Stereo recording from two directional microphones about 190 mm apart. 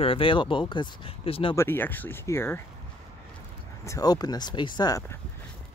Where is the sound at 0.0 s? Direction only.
30° left (ahead or behind).